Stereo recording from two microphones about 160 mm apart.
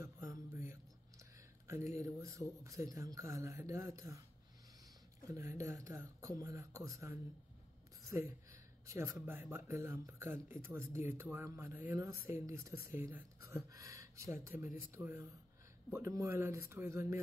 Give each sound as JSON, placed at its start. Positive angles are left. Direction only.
{"t": 0.5, "sound": "a sound", "side_deg": -15}
{"t": 1.7, "sound": "speech", "side_deg": -20}
{"t": 5.3, "sound": "speech", "side_deg": -20}